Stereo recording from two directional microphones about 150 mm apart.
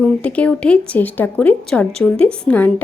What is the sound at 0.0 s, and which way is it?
A woman's voice, 10° left (ahead or behind).